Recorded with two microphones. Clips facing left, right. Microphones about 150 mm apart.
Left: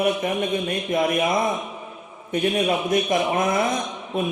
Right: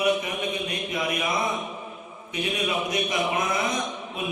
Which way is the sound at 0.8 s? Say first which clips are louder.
Left 8 dB; 50° left (ahead or behind).